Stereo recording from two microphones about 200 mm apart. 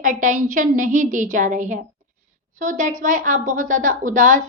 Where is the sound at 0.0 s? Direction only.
40° right (ahead or behind).